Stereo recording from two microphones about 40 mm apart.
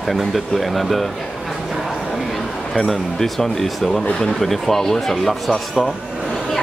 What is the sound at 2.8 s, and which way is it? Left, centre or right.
Speech, centre.